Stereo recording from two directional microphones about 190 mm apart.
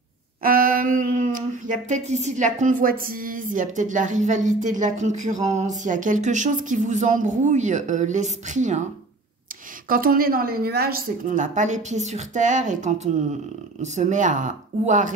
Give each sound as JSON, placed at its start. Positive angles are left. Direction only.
{"t": 0.4, "sound": "speech", "side_deg": -50}
{"t": 9.8, "sound": "a woman's voice", "side_deg": -50}